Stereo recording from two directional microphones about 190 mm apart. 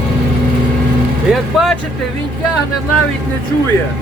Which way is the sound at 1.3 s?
Centre (ahead or behind).